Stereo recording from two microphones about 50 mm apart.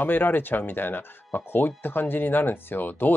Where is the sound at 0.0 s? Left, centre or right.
Left.